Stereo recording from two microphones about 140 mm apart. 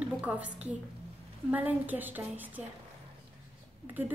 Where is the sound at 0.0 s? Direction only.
10° right (ahead or behind).